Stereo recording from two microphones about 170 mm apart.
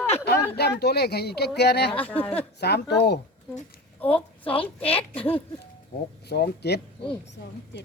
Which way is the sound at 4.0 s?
10° left (ahead or behind).